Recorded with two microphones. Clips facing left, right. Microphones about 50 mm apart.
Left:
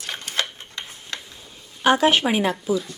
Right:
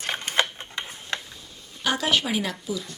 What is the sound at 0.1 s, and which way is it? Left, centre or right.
Typing, right.